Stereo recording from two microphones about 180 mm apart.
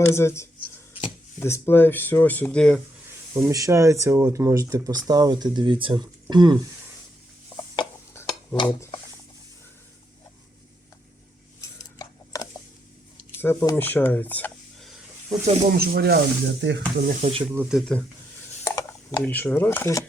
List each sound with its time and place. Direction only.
0.1 s speech: 15° left (ahead or behind)
3.3 s speech: 15° right (ahead or behind)
11.8 s dishes: 20° left (ahead or behind)
13.4 s speech: 10° left (ahead or behind)
15.4 s speech: 35° right (ahead or behind)
15.7 s speech: 60° right (ahead or behind); by 16.8 s 75° right (ahead or behind)
17.0 s speech: 55° right (ahead or behind)
17.4 s speech: 10° right (ahead or behind)
18.6 s speech: 15° left (ahead or behind)